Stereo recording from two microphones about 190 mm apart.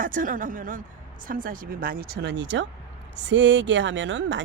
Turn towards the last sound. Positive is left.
turn(degrees=-70)  # may be behind; listen again after turning